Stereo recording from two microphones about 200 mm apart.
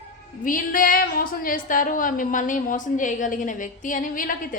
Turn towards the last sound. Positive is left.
turn(degrees=45)  # may be behind; listen again after turning